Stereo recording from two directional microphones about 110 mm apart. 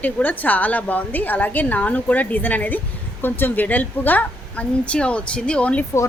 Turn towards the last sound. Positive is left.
turn(degrees=10)  # may be behind; listen again after turning